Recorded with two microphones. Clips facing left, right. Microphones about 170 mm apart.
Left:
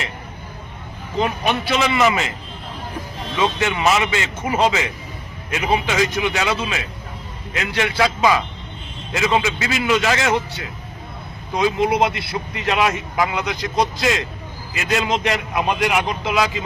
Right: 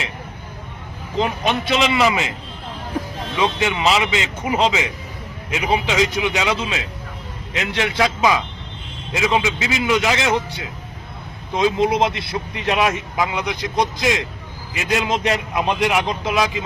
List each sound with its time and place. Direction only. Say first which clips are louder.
1.2 s speech: even; 20° right (ahead or behind)
3.3 s a man's voice: even; 15° right (ahead or behind)
12.0 s speech: even; 20° right (ahead or behind)
15.5 s speech: even; 5° left (ahead or behind)
16.2 s speech: even; 20° right (ahead or behind)